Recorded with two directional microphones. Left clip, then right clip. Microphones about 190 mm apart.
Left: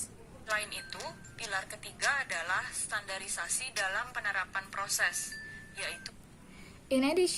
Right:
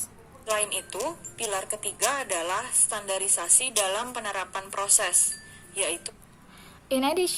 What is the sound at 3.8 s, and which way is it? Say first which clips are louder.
A woman's voice: right 6 dB; 40° right (ahead or behind).